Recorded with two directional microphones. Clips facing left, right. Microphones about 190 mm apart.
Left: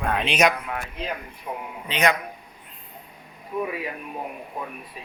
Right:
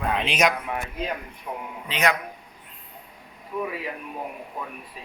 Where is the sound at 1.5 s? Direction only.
10° left (ahead or behind).